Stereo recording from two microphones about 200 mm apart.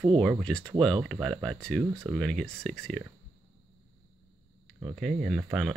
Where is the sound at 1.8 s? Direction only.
15° right (ahead or behind).